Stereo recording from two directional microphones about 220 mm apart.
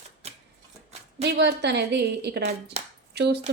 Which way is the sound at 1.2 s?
50° right (ahead or behind).